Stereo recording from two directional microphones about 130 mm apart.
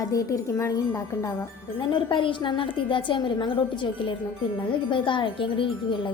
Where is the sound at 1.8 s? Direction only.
35° left (ahead or behind).